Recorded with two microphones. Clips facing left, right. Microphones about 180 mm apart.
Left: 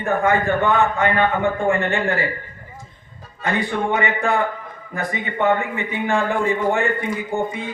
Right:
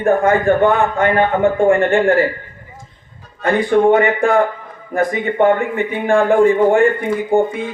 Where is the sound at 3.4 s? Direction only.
50° right (ahead or behind).